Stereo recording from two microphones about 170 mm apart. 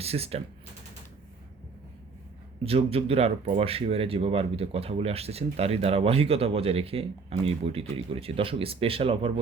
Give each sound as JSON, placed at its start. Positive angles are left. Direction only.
{"t": 0.0, "sound": "speech", "side_deg": -35}
{"t": 2.6, "sound": "speech", "side_deg": -35}